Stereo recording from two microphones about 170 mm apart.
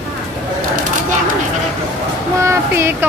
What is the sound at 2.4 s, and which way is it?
Speech, 15° right (ahead or behind).